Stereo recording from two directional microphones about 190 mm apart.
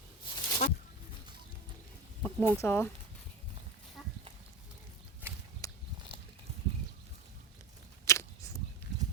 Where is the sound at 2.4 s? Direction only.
10° left (ahead or behind).